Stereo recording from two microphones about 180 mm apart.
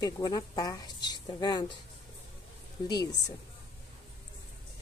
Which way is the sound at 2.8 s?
25° left (ahead or behind).